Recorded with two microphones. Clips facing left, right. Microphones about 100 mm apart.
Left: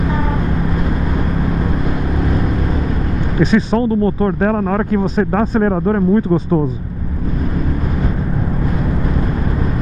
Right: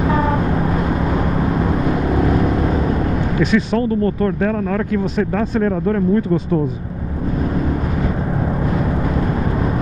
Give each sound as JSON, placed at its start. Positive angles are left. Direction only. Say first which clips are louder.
{"t": 3.3, "sound": "speech", "louder": "left 4 dB", "side_deg": 30}
{"t": 4.4, "sound": "speech", "louder": "left 3 dB", "side_deg": 40}